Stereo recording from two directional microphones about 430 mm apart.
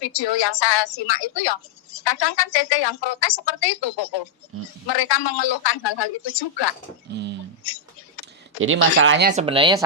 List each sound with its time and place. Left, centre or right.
0.0 s a woman's voice: left
4.5 s speech: right
4.9 s a man's voice: left
7.1 s speech: right
7.6 s a sound: left
8.6 s speech: right; by 9.8 s centre